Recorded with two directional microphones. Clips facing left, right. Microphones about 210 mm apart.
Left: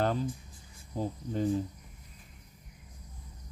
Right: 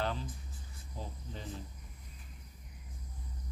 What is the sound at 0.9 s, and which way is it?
Cricket, 45° left (ahead or behind).